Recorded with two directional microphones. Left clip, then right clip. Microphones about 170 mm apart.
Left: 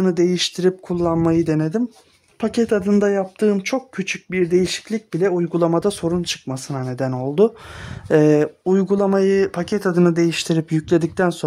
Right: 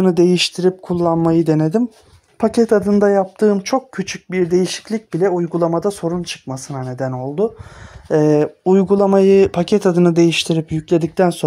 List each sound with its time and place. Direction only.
0.0 s speech: 10° right (ahead or behind)
0.6 s speech: 5° left (ahead or behind)
2.7 s speech: 5° left (ahead or behind)
3.2 s speech: 15° left (ahead or behind)
5.1 s speech: 10° left (ahead or behind); by 7.5 s 35° left (ahead or behind)
8.1 s speech: 10° left (ahead or behind)
8.6 s speech: 5° right (ahead or behind)
9.1 s speech: 15° right (ahead or behind); by 11.2 s 5° left (ahead or behind)